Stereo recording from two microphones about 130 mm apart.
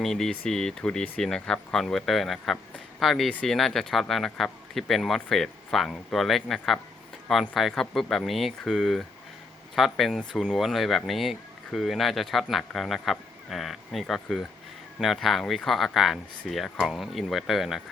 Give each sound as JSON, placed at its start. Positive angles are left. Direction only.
{"t": 0.0, "sound": "speech", "side_deg": 5}